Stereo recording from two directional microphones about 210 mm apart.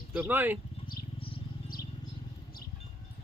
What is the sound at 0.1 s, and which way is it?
Speech, 10° right (ahead or behind).